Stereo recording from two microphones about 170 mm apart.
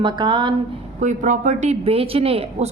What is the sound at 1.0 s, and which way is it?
A woman's voice, 45° right (ahead or behind).